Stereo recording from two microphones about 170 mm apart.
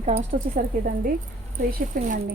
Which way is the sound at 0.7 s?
60° right (ahead or behind).